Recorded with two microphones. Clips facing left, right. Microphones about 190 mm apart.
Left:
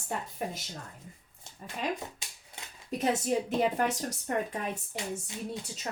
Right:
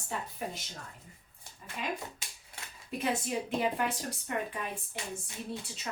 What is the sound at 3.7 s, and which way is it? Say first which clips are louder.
Speech: left 4 dB; 45° left (ahead or behind).